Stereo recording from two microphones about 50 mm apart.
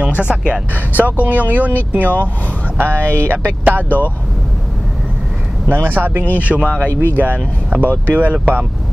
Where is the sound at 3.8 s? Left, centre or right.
Left.